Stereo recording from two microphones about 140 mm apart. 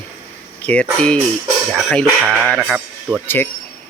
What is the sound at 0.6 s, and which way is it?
Speech, 10° left (ahead or behind).